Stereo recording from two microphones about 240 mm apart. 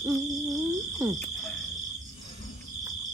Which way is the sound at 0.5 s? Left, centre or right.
Centre.